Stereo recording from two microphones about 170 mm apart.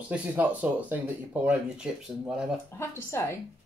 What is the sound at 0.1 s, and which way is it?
Speech, 10° right (ahead or behind).